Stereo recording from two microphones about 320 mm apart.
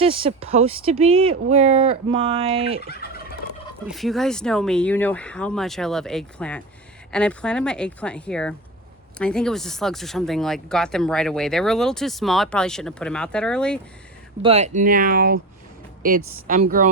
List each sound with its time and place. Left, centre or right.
0.0 s speech: centre
2.8 s fowl: left
3.8 s speech: centre
14.4 s speech: centre